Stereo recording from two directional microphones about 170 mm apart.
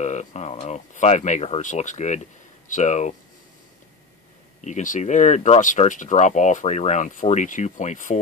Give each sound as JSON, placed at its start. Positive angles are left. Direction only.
{"t": 0.0, "sound": "speech", "side_deg": 45}
{"t": 4.6, "sound": "speech", "side_deg": 45}